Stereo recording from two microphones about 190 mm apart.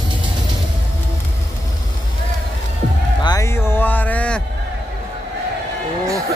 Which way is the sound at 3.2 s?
15° left (ahead or behind).